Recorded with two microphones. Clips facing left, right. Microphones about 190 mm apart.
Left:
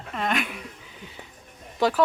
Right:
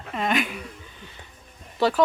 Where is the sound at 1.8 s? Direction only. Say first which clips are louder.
Right 1 dB; 10° left (ahead or behind).